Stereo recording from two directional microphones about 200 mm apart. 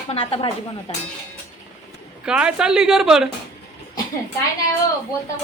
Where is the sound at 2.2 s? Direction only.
5° right (ahead or behind).